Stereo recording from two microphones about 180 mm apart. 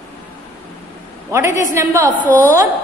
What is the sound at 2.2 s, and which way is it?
Speech, 10° left (ahead or behind).